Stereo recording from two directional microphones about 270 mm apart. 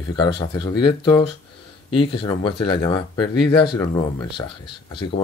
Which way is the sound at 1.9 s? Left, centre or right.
Centre.